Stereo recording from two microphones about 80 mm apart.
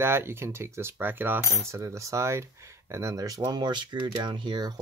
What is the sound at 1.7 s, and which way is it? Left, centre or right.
Speech, right.